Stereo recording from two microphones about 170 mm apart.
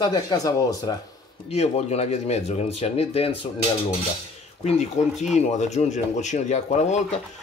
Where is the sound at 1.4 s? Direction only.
40° left (ahead or behind).